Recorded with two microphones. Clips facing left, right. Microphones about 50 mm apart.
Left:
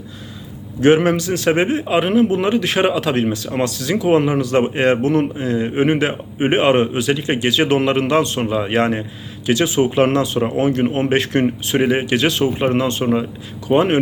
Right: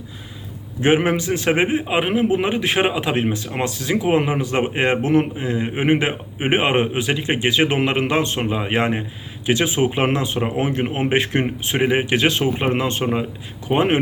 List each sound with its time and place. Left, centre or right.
0.8 s a man's voice: centre